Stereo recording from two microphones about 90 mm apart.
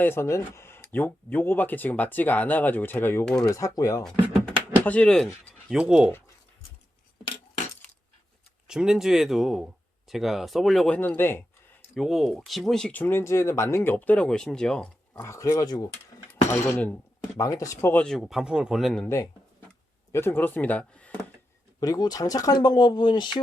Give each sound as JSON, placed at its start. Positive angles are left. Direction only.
{"t": 0.0, "sound": "speech", "side_deg": 25}
{"t": 3.4, "sound": "speech", "side_deg": 40}
{"t": 4.4, "sound": "speech", "side_deg": 15}
{"t": 5.7, "sound": "speech", "side_deg": -10}
{"t": 8.6, "sound": "speech", "side_deg": -5}
{"t": 10.8, "sound": "speech", "side_deg": 15}
{"t": 11.9, "sound": "speech", "side_deg": 0}
{"t": 12.9, "sound": "speech", "side_deg": 25}
{"t": 15.2, "sound": "speech", "side_deg": 35}
{"t": 17.3, "sound": "speech", "side_deg": 35}
{"t": 17.9, "sound": "speech", "side_deg": 10}
{"t": 18.2, "sound": "speech", "side_deg": -5}
{"t": 19.0, "sound": "speech", "side_deg": 35}
{"t": 21.8, "sound": "speech", "side_deg": 45}